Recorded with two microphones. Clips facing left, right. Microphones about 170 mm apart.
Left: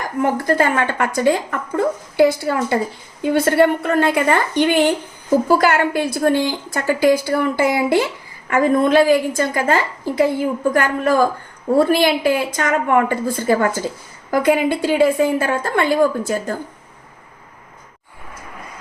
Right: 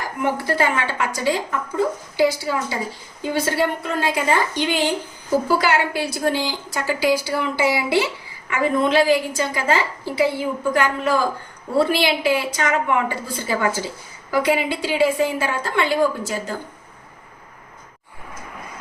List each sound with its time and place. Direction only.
0.4 s a woman's voice: 50° left (ahead or behind)